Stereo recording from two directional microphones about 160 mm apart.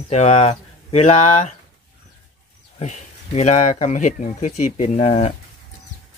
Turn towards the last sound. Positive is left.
turn(degrees=40)  # may be behind; listen again after turning